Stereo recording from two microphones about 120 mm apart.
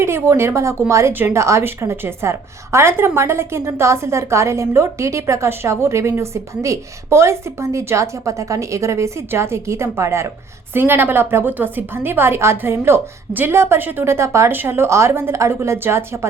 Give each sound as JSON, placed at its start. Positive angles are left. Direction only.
{"t": 0.0, "sound": "a woman's voice", "side_deg": -20}